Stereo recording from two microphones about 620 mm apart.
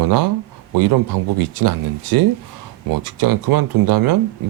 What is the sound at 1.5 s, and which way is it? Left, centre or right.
Speech, right.